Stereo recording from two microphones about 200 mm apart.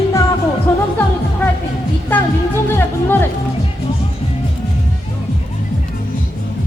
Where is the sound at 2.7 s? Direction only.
10° left (ahead or behind).